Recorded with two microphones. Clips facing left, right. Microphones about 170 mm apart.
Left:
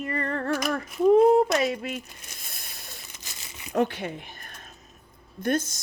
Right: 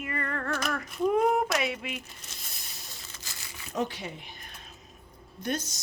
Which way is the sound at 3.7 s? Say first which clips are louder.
Left 7 dB; 60° left (ahead or behind).